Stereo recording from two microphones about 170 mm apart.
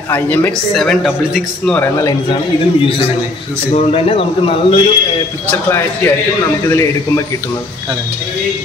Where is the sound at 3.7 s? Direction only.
35° left (ahead or behind).